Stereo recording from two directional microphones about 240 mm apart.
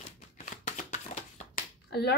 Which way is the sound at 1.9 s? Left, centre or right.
Left.